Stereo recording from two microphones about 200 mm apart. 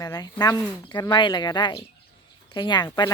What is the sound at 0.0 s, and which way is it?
Speech, 20° left (ahead or behind).